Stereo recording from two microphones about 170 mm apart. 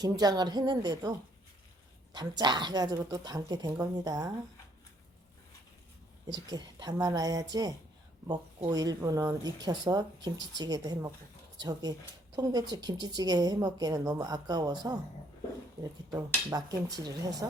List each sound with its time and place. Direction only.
0.0 s speech: 25° right (ahead or behind)
2.1 s speech: 25° right (ahead or behind)
6.3 s speech: 25° right (ahead or behind)
16.1 s speech: 20° right (ahead or behind)